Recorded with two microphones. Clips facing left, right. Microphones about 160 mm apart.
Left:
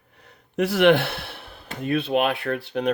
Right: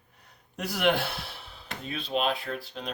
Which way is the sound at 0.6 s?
75° left (ahead or behind).